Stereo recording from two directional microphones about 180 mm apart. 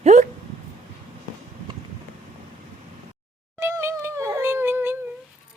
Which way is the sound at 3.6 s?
15° right (ahead or behind).